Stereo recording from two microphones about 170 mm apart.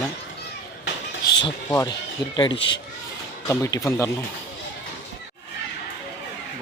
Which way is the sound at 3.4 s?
20° left (ahead or behind).